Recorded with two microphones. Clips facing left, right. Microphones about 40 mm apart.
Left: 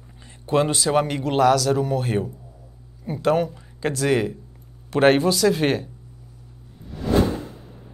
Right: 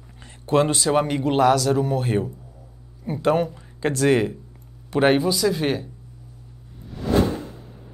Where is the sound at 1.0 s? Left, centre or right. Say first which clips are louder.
Even; centre.